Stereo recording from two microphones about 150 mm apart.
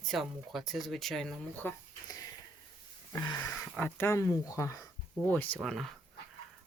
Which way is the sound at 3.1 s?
25° left (ahead or behind).